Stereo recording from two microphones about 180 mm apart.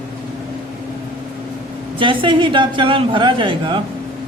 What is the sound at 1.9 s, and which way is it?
A man's voice, 25° right (ahead or behind).